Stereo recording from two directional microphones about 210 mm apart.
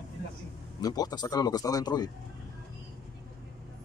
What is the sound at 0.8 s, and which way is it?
Speech, 20° left (ahead or behind).